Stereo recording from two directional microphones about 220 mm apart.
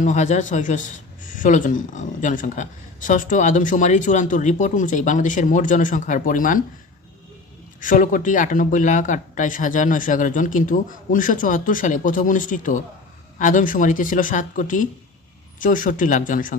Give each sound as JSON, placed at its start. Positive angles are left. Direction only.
{"t": 0.0, "sound": "speech", "side_deg": 35}
{"t": 7.8, "sound": "speech", "side_deg": 35}